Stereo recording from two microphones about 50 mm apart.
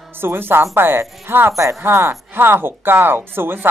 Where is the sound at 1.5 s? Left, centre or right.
Right.